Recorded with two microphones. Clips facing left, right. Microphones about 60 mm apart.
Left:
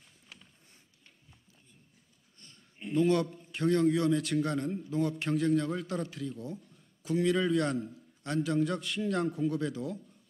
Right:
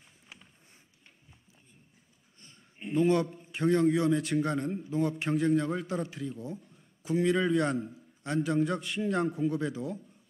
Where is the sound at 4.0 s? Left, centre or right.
Centre.